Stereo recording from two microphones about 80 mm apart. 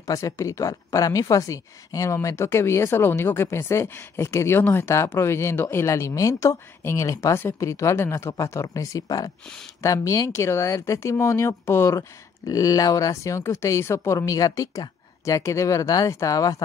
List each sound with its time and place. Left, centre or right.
0.0 s speech: left
2.1 s speech: left
12.4 s speech: left